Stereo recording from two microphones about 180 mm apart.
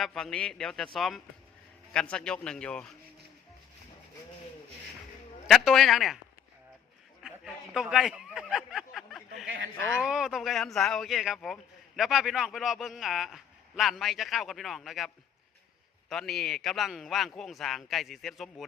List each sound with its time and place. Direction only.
0.0 s a man's voice: 5° left (ahead or behind)
5.5 s a man's voice: centre (ahead or behind)
7.2 s a sound: 5° right (ahead or behind)
10.0 s a man's voice: 5° right (ahead or behind)